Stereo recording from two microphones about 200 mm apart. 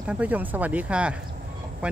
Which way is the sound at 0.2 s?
10° right (ahead or behind).